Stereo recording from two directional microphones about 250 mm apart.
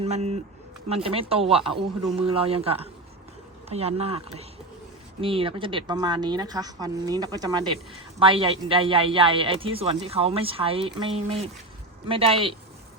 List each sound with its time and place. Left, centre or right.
0.0 s speech: right